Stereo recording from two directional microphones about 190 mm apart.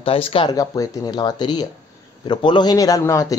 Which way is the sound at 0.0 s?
30° left (ahead or behind).